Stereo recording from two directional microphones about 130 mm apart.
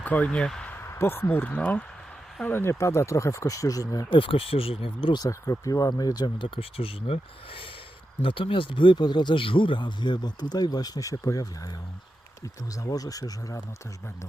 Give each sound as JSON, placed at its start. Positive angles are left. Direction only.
{"t": 0.0, "sound": "speech", "side_deg": 10}
{"t": 0.9, "sound": "speech", "side_deg": 20}
{"t": 4.1, "sound": "speech", "side_deg": 45}
{"t": 5.2, "sound": "speech", "side_deg": 25}
{"t": 12.7, "sound": "speech", "side_deg": 25}